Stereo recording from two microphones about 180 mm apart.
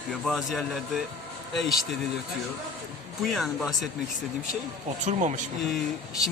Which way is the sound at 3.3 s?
Centre (ahead or behind).